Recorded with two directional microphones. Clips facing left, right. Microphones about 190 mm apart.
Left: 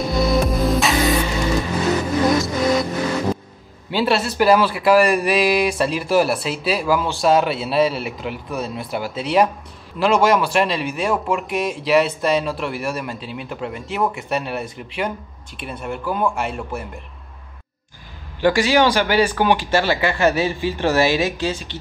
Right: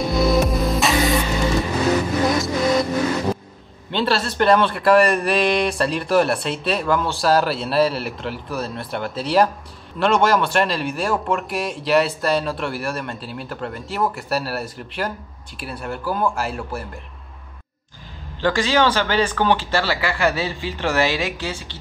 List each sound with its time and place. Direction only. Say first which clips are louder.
0.0 s music: right 1 dB; centre (ahead or behind)
2.3 s music: left 1 dB; centre (ahead or behind)
3.9 s speech: left 2 dB; 5° left (ahead or behind)
18.4 s speech: left 3 dB; 15° left (ahead or behind)